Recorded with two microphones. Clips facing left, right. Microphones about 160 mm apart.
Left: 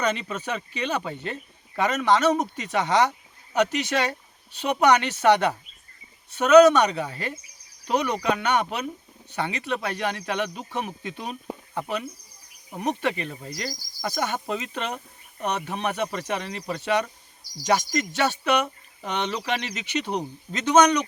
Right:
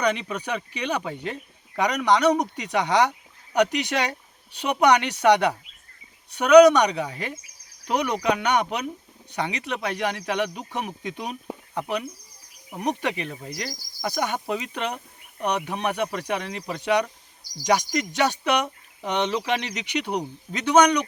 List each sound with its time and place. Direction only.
0.0 s speech: 15° right (ahead or behind)
12.8 s speech: 15° right (ahead or behind)